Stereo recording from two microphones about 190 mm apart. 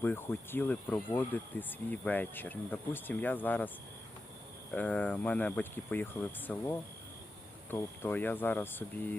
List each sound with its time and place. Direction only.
0.0 s speech: 10° left (ahead or behind)
4.7 s speech: 5° left (ahead or behind)
7.7 s speech: 10° left (ahead or behind)